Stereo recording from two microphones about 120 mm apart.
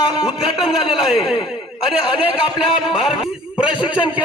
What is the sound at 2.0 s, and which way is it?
Speech, 45° left (ahead or behind).